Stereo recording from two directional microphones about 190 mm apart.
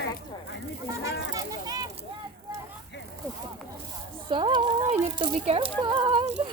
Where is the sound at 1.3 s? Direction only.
20° right (ahead or behind).